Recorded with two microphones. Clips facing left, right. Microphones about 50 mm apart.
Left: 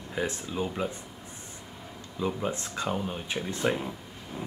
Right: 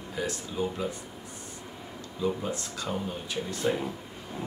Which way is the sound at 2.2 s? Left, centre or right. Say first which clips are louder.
Even; left.